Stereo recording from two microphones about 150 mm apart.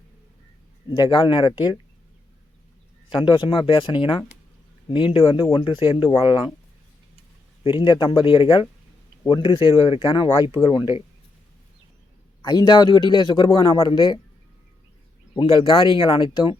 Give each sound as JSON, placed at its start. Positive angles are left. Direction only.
{"t": 0.9, "sound": "speech", "side_deg": 30}
{"t": 3.2, "sound": "speech", "side_deg": 35}
{"t": 7.6, "sound": "speech", "side_deg": 35}
{"t": 12.4, "sound": "speech", "side_deg": 30}
{"t": 15.4, "sound": "speech", "side_deg": 35}